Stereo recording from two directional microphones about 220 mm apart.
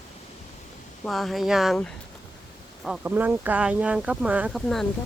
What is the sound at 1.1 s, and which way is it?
Speech, centre (ahead or behind).